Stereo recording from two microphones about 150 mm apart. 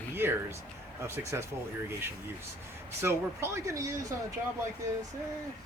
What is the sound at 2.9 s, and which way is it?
Speech, 20° right (ahead or behind).